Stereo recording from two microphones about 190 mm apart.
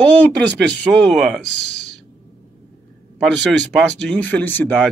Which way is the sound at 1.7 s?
65° left (ahead or behind).